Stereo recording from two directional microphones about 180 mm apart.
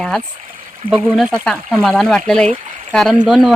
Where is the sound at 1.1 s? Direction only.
Centre (ahead or behind).